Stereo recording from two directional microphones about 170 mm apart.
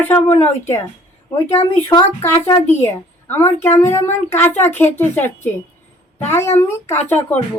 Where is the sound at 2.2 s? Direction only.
15° left (ahead or behind).